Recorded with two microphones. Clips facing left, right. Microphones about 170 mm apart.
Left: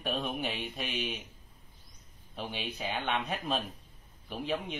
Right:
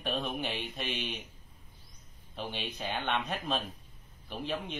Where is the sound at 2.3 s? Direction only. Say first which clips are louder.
Even; 5° left (ahead or behind).